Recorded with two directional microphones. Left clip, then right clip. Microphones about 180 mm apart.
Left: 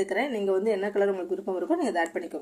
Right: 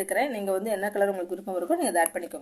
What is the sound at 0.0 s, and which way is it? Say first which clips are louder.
Speech: even; 35° right (ahead or behind).